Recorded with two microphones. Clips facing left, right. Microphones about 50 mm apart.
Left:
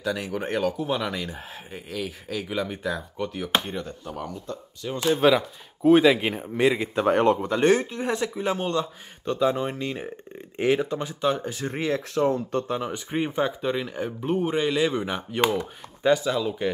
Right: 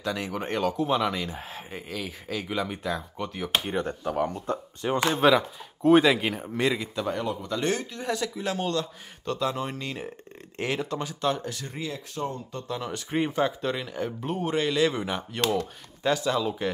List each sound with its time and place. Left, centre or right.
0.0 s a man's voice: centre
3.7 s speech: right
5.2 s a man's voice: centre
7.1 s speech: left
7.4 s speech: left; by 11.5 s centre
11.7 s speech: left
12.1 s speech: left
13.3 s speech: centre
15.4 s speech: centre
16.1 s a man's voice: centre